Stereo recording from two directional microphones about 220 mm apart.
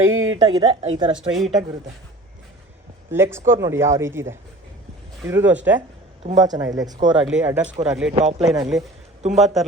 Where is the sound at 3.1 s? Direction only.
10° right (ahead or behind).